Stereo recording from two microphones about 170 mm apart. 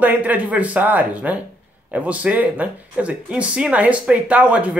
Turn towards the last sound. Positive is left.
turn(degrees=-10)  # may be behind; listen again after turning